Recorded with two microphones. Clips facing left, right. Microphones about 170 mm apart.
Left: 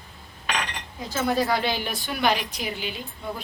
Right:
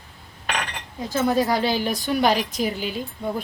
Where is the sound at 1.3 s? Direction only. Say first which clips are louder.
Right 2 dB; 40° right (ahead or behind).